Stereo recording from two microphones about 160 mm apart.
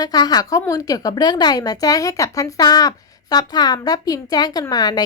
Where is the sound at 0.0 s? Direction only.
25° left (ahead or behind).